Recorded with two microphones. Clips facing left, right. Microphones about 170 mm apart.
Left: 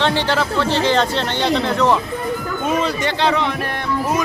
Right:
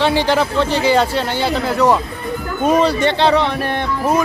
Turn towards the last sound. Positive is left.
turn(degrees=-30)  # may be behind; listen again after turning